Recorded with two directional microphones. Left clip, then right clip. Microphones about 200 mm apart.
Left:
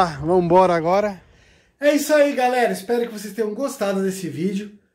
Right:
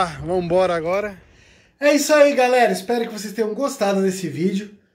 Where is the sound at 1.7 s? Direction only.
5° right (ahead or behind).